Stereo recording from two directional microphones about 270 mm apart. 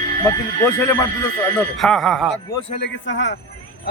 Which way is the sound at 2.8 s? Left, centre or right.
Left.